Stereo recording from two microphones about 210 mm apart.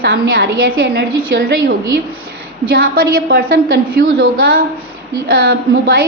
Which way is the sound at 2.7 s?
45° right (ahead or behind).